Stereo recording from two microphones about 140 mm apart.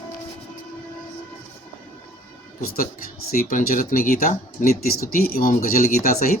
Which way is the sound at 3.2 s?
90° left.